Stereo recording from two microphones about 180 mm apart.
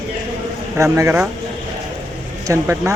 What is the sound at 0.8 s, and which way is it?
Speech, 15° right (ahead or behind).